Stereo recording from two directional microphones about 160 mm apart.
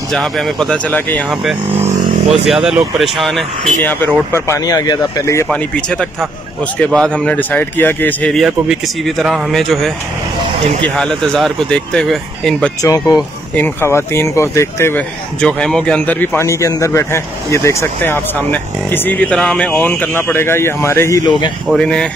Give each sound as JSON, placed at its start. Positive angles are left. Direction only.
{"t": 0.1, "sound": "speech", "side_deg": 0}
{"t": 1.3, "sound": "speech", "side_deg": -5}
{"t": 3.8, "sound": "speech", "side_deg": 15}
{"t": 5.5, "sound": "speech", "side_deg": 5}
{"t": 11.0, "sound": "speech", "side_deg": 5}
{"t": 12.8, "sound": "speech", "side_deg": 20}
{"t": 21.7, "sound": "speech", "side_deg": 5}